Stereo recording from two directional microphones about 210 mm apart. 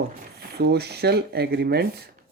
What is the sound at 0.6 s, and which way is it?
Speech, 50° right (ahead or behind).